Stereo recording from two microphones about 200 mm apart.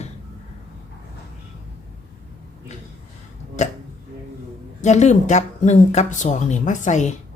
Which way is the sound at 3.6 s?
35° left (ahead or behind).